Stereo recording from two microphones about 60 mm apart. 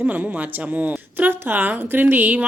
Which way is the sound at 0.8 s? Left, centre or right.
Right.